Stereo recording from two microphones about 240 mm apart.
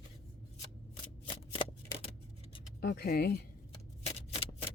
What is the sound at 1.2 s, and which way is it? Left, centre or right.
Shuffling cards, left.